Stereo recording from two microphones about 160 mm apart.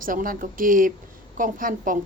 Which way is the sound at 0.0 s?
60° right (ahead or behind).